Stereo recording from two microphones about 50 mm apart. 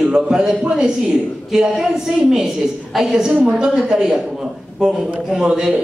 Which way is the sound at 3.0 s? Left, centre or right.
Centre.